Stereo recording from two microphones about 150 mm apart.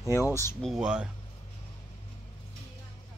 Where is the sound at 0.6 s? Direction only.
5° right (ahead or behind).